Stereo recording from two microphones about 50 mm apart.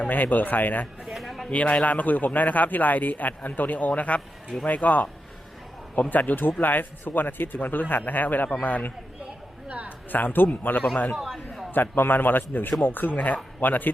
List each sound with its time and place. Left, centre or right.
0.0 s speech: left
1.0 s a sound: centre
1.5 s speech: left
9.6 s a sound: right
10.1 s speech: left
11.1 s chatter: centre
11.7 s a man's voice: left